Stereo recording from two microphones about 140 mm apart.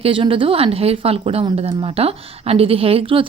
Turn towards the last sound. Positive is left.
turn(degrees=-40)  # may be behind; listen again after turning